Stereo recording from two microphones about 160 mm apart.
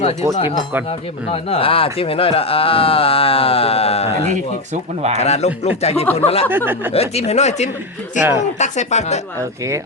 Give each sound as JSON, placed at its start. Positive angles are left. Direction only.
{"t": 0.9, "sound": "speech", "side_deg": 35}
{"t": 4.4, "sound": "speech", "side_deg": -45}
{"t": 5.1, "sound": "speech", "side_deg": 45}